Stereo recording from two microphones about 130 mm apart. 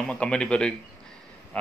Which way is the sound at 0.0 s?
10° left (ahead or behind).